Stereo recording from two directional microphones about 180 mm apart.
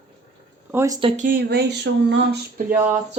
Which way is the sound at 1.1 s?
45° right (ahead or behind).